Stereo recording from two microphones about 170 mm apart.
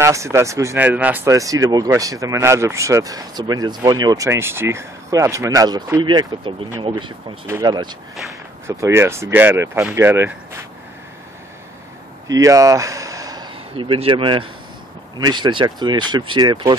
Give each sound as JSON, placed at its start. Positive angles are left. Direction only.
{"t": 0.0, "sound": "speech", "side_deg": -15}
{"t": 12.3, "sound": "speech", "side_deg": -20}